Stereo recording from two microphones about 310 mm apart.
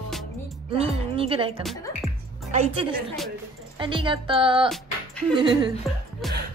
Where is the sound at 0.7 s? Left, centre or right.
Centre.